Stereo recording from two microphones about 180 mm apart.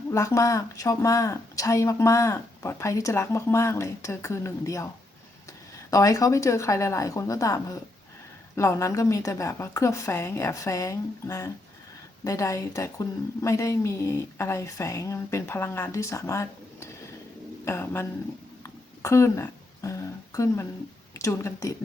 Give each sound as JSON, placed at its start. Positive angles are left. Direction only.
{"t": 0.1, "sound": "speech", "side_deg": 15}
{"t": 5.9, "sound": "speech", "side_deg": 20}
{"t": 18.6, "sound": "a sound", "side_deg": 15}
{"t": 21.1, "sound": "speech", "side_deg": 15}